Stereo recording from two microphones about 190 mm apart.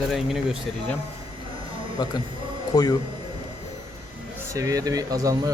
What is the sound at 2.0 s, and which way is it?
Speech, 20° left (ahead or behind).